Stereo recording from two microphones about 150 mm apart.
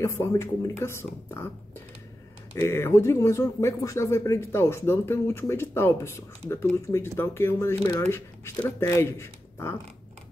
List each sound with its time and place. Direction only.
0.0 s speech: 20° left (ahead or behind)
2.5 s speech: 15° left (ahead or behind)